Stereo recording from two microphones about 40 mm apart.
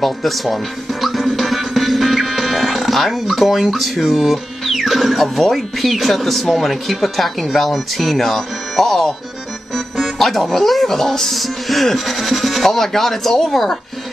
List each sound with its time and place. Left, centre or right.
0.0 s speech: centre
1.0 s music: centre
3.7 s speech: centre